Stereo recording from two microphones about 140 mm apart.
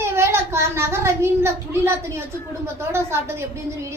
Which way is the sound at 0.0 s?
20° right (ahead or behind).